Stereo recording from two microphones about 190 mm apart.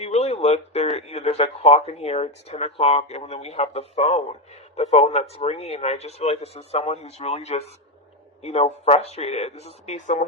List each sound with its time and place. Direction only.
0.0 s speech: 35° left (ahead or behind)